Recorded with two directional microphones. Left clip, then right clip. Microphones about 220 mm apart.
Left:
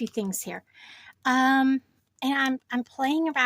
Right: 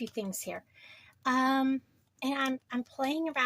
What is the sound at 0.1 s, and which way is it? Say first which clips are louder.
Speech: left 5 dB; 45° left (ahead or behind).